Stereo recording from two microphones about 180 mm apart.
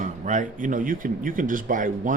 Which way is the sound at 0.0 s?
45° right (ahead or behind).